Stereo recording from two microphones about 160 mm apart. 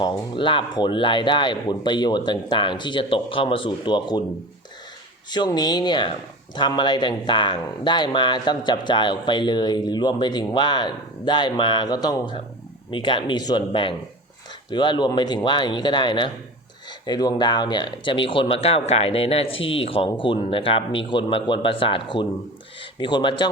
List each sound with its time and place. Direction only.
0.0 s speech: 30° left (ahead or behind)
5.3 s speech: 25° left (ahead or behind)